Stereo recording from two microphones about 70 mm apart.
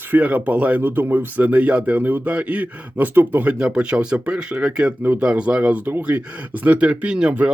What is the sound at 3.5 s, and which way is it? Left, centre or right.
Speech, centre.